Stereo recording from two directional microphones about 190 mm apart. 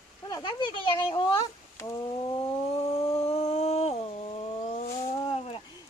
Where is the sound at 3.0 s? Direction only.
30° left (ahead or behind).